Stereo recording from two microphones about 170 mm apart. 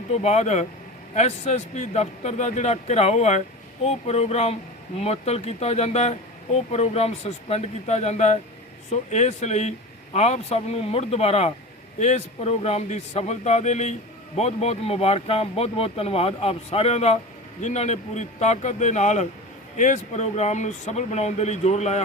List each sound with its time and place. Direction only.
0.1 s a man's voice: 40° left (ahead or behind)